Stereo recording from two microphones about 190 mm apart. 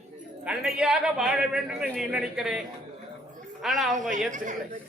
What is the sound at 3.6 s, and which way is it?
Speech, centre (ahead or behind).